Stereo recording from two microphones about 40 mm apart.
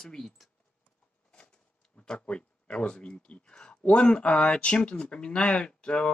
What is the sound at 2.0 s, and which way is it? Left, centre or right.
Speech, left.